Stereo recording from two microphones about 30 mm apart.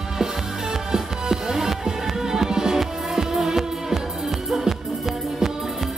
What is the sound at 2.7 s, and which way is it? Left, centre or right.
Music, centre.